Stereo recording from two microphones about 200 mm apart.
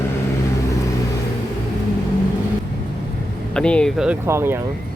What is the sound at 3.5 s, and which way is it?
Speech, 5° left (ahead or behind).